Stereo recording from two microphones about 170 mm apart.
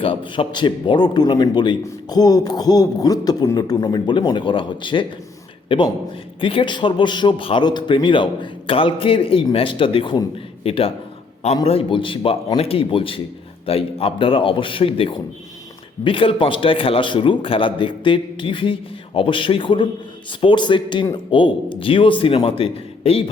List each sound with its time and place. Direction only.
0.0 s a man's voice: 30° left (ahead or behind)